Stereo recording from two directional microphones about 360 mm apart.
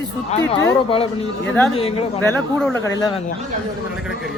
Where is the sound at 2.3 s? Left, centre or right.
Centre.